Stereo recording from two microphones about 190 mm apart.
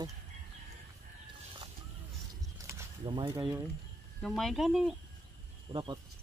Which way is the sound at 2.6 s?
20° right (ahead or behind).